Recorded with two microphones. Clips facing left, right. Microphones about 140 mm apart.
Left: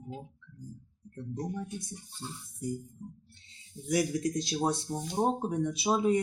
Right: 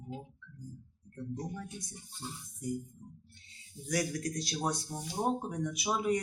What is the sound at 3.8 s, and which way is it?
Speech, 25° left (ahead or behind).